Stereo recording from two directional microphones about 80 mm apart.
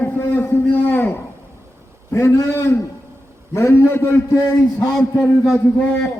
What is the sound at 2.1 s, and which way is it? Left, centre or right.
A man's voice, left.